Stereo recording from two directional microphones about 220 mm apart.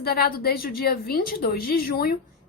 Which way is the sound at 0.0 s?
45° left (ahead or behind).